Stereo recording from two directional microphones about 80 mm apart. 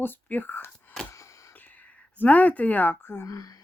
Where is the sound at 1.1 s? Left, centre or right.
Left.